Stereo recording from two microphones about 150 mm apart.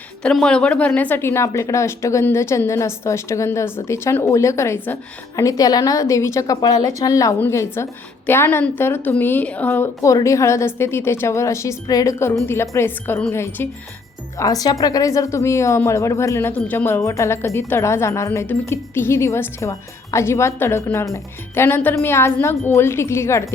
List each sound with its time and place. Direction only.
0.2 s a woman's voice: 5° left (ahead or behind)